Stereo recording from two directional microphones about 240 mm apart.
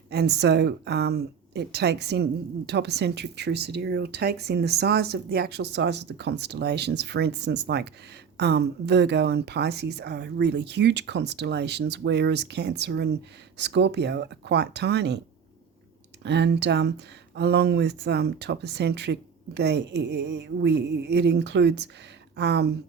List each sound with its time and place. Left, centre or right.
0.1 s speech: right
16.2 s speech: right